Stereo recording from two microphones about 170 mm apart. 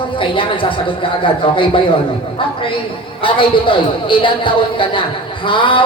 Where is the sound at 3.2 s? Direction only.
30° left (ahead or behind).